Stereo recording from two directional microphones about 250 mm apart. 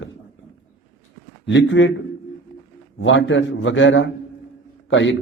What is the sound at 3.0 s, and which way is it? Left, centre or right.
Speech, left.